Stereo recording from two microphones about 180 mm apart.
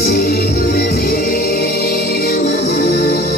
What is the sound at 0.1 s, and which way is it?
Music, 60° left (ahead or behind).